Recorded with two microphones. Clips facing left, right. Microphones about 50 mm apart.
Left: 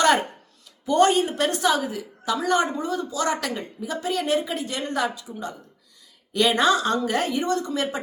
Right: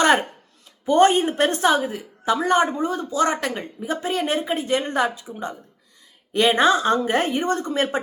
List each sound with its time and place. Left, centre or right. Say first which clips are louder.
0.9 s a woman's voice: right 3 dB; right